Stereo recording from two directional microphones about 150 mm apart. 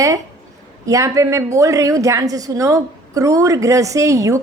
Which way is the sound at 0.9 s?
20° right (ahead or behind).